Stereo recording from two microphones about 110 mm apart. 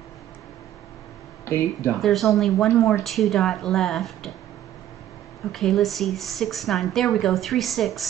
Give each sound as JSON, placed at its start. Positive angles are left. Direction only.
{"t": 1.4, "sound": "speech", "side_deg": 25}
{"t": 2.0, "sound": "speech", "side_deg": 0}
{"t": 5.5, "sound": "speech", "side_deg": 0}